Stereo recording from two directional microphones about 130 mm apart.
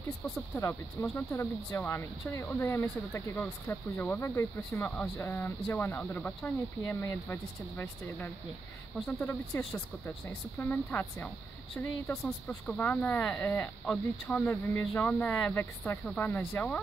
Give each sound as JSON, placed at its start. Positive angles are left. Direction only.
{"t": 1.0, "sound": "speech", "side_deg": 20}
{"t": 8.9, "sound": "speech", "side_deg": 10}
{"t": 11.7, "sound": "speech", "side_deg": 10}